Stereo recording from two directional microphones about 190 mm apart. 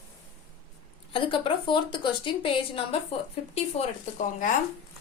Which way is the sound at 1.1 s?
25° left (ahead or behind).